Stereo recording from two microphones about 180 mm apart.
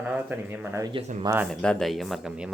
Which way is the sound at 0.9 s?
40° right (ahead or behind).